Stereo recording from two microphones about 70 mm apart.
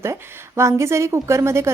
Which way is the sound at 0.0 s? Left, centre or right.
Right.